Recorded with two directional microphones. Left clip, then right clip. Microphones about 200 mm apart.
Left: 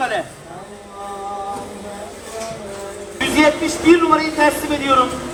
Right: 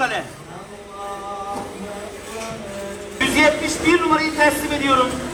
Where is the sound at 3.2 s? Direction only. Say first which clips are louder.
Left 1 dB; centre (ahead or behind).